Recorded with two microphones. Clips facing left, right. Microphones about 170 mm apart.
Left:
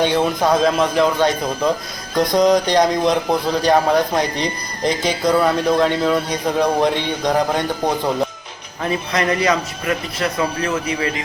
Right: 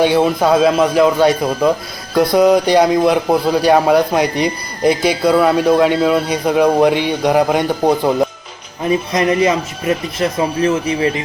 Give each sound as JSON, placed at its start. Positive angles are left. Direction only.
{"t": 0.0, "sound": "a man's voice", "side_deg": -10}
{"t": 8.8, "sound": "speech", "side_deg": -20}